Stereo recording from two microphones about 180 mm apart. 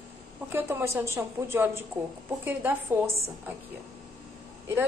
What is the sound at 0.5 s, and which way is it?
A woman's voice, 10° right (ahead or behind).